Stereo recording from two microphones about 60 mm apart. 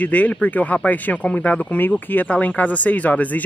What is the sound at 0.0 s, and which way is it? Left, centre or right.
Speech, left.